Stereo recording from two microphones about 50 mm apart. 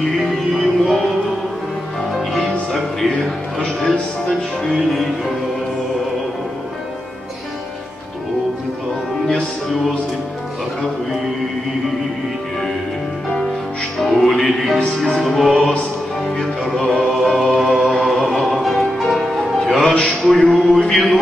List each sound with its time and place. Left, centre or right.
0.6 s music: centre
2.1 s music: centre
3.5 s music: centre
14.2 s music: centre
16.7 s music: centre
17.1 s music: centre
20.1 s a sound: centre
20.9 s a man's voice: centre